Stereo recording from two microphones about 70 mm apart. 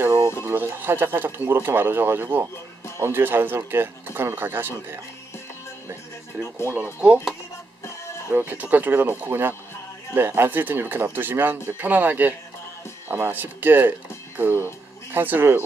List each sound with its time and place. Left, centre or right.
0.4 s speech: right
6.6 s speech: right
8.3 s speech: right